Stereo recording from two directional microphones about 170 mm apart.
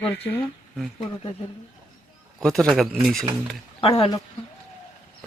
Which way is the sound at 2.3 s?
Centre (ahead or behind).